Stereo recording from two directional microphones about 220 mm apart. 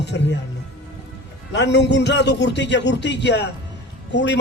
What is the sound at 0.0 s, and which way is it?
Music, 50° left (ahead or behind).